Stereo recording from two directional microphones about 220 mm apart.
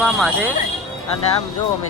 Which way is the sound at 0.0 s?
Centre (ahead or behind).